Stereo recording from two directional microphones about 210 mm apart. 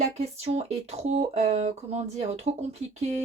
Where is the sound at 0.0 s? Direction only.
30° right (ahead or behind).